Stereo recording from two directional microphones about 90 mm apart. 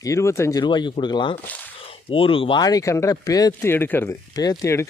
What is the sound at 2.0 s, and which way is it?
Speech, 90° left.